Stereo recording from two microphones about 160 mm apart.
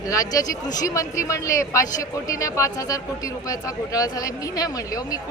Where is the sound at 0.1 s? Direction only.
20° left (ahead or behind).